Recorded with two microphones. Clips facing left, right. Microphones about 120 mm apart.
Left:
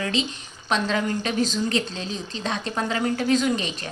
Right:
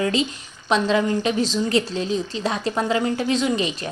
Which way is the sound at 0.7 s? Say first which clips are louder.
Right 5 dB; 30° right (ahead or behind).